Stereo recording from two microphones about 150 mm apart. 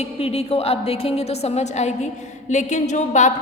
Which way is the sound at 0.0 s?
45° left (ahead or behind).